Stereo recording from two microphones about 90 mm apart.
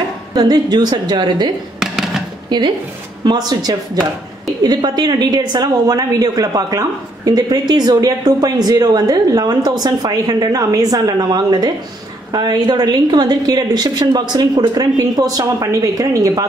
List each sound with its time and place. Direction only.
0.3 s speech: 50° right (ahead or behind)
1.8 s a sound: 5° right (ahead or behind)
2.5 s speech: 55° right (ahead or behind); by 16.4 s 40° right (ahead or behind)